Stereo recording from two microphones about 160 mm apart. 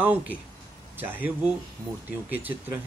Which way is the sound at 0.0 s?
10° right (ahead or behind).